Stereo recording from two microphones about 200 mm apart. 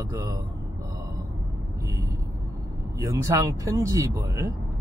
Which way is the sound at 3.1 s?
15° right (ahead or behind).